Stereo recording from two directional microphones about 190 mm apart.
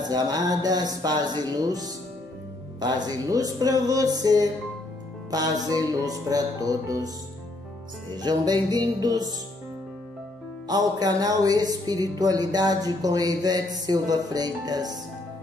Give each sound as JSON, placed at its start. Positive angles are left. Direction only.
{"t": 0.0, "sound": "speech", "side_deg": -20}
{"t": 8.2, "sound": "speech", "side_deg": -20}
{"t": 10.7, "sound": "speech", "side_deg": -20}